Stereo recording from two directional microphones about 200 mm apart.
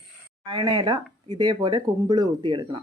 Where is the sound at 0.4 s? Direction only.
20° right (ahead or behind).